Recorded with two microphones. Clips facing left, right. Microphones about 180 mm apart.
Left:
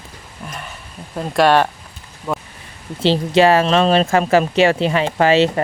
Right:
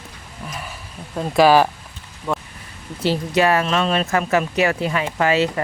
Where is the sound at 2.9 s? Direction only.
25° left (ahead or behind).